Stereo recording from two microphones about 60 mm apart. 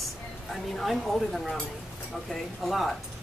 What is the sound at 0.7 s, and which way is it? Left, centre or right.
Speech, centre.